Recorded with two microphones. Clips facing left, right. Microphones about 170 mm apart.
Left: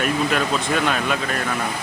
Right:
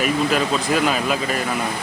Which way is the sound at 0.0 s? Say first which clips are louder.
Right 2 dB; 5° right (ahead or behind).